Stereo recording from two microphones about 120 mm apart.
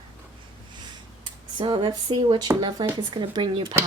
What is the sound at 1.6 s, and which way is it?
Speech, 40° right (ahead or behind).